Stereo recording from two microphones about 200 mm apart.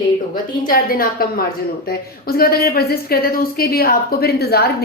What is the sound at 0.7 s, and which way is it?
A woman's voice, 45° left (ahead or behind).